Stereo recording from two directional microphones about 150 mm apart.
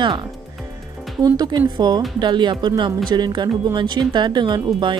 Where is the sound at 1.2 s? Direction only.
25° right (ahead or behind).